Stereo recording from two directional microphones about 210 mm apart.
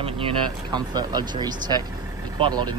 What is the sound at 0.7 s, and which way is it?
Speech, 20° right (ahead or behind).